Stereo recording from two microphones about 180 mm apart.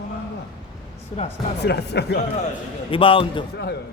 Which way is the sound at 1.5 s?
65° left (ahead or behind).